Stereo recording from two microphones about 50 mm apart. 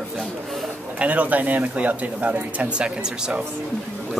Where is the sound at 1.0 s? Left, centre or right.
Right.